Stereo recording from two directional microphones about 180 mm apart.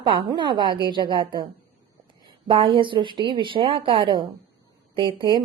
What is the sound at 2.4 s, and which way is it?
A woman's voice, 30° right (ahead or behind).